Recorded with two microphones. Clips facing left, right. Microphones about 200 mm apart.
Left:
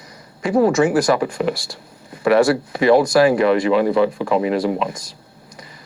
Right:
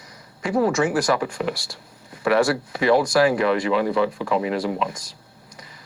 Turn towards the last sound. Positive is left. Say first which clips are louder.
# left 5 dB
turn(degrees=25)  # may be behind; listen again after turning